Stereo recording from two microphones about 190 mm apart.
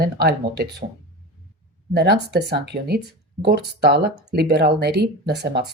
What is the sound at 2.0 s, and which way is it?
Speech, 60° right (ahead or behind).